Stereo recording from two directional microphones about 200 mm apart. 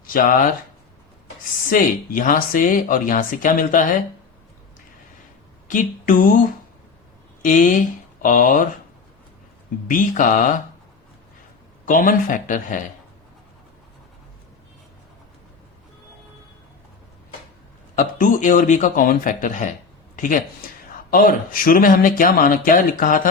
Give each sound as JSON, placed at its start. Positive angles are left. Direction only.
{"t": 0.0, "sound": "speech", "side_deg": 45}
{"t": 1.7, "sound": "speech", "side_deg": 45}
{"t": 5.6, "sound": "speech", "side_deg": 40}
{"t": 7.4, "sound": "speech", "side_deg": 40}
{"t": 9.8, "sound": "speech", "side_deg": 45}
{"t": 11.9, "sound": "speech", "side_deg": 40}
{"t": 17.9, "sound": "speech", "side_deg": 40}